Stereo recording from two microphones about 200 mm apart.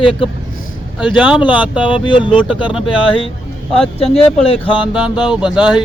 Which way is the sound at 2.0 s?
25° left (ahead or behind).